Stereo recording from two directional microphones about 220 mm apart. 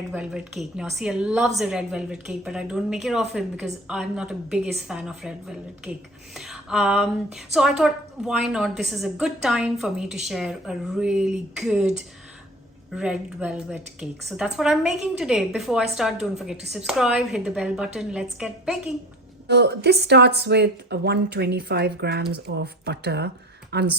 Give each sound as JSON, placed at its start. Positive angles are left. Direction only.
{"t": 0.1, "sound": "a woman's voice", "side_deg": -5}
{"t": 6.3, "sound": "a sound", "side_deg": 0}
{"t": 7.3, "sound": "a woman's voice", "side_deg": 0}
{"t": 13.0, "sound": "a woman's voice", "side_deg": -5}
{"t": 19.5, "sound": "speech", "side_deg": -50}